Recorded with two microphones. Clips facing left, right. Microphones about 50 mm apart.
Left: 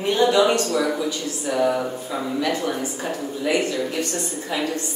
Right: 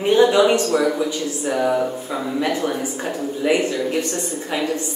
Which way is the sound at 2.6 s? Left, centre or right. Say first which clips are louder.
Right 2 dB; centre.